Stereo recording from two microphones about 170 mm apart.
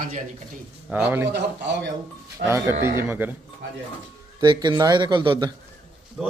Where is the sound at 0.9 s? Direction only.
5° right (ahead or behind).